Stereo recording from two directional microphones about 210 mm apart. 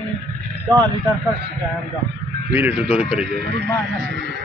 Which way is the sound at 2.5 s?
10° right (ahead or behind).